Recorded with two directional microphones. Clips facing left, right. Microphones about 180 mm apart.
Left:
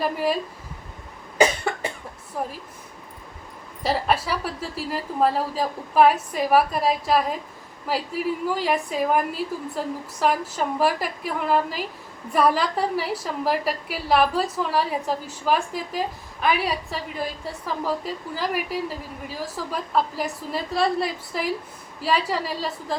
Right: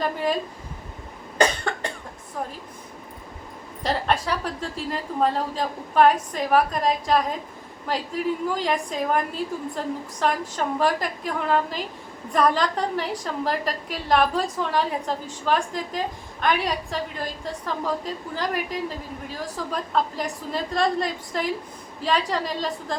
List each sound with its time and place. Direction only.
0.0 s a woman's voice: 5° left (ahead or behind)
1.4 s cough: 5° left (ahead or behind)
2.4 s a woman's voice: 5° left (ahead or behind)
3.8 s a woman's voice: 5° left (ahead or behind)